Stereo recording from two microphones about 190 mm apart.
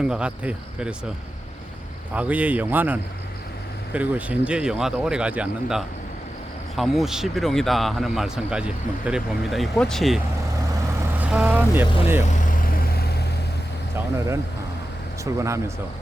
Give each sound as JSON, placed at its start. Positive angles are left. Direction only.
{"t": 0.0, "sound": "speech", "side_deg": -5}
{"t": 2.1, "sound": "speech", "side_deg": -5}
{"t": 12.5, "sound": "vehicle", "side_deg": 50}
{"t": 15.2, "sound": "speech", "side_deg": -15}